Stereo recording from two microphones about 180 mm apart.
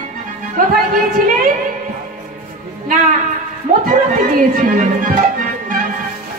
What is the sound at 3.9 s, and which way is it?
Speech, 50° right (ahead or behind).